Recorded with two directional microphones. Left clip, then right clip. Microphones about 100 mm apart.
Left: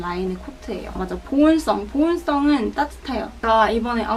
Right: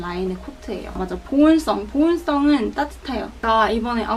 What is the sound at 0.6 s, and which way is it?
A woman's voice, centre (ahead or behind).